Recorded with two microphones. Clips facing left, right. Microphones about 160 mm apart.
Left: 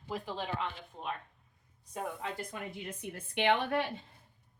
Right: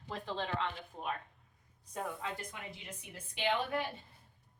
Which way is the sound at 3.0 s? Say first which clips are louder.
Left 5 dB; 60° left (ahead or behind).